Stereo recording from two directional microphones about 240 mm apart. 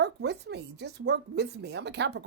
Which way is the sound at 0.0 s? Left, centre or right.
Right.